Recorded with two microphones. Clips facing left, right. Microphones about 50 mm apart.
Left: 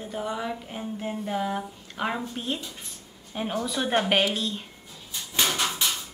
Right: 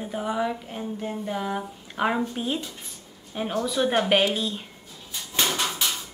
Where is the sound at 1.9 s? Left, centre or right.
Centre.